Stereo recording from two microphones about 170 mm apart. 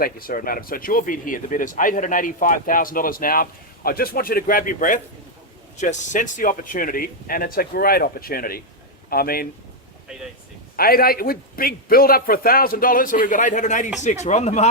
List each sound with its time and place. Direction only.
0.0 s a man's voice: 60° left (ahead or behind)
10.8 s speech: 60° left (ahead or behind); by 14.7 s 40° left (ahead or behind)